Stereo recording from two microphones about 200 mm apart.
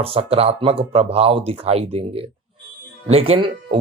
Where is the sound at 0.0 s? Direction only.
30° right (ahead or behind).